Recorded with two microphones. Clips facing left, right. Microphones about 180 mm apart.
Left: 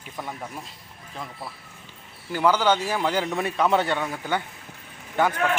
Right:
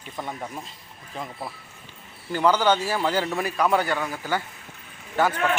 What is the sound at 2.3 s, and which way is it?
A man's voice, 10° left (ahead or behind).